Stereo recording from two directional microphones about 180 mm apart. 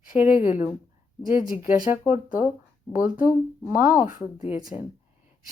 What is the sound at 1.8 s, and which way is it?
Speech, 10° right (ahead or behind).